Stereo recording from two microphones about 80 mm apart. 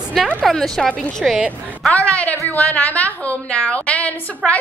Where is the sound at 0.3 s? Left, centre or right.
Centre.